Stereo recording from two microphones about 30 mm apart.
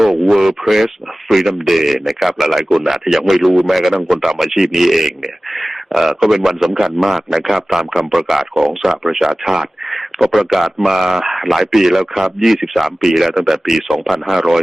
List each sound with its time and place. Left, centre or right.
0.3 s a man's voice: centre
6.0 s a man's voice: centre